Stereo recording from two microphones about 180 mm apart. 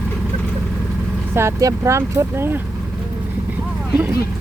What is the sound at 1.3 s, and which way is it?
Speech, 15° right (ahead or behind).